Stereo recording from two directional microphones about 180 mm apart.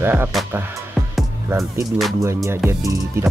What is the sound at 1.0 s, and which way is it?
Music, centre (ahead or behind).